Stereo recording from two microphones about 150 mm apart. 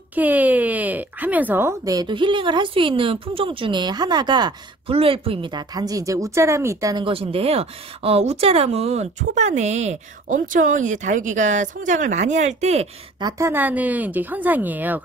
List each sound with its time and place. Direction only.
0.1 s speech: 10° right (ahead or behind)
7.1 s speech: 40° right (ahead or behind)
13.2 s speech: 15° right (ahead or behind)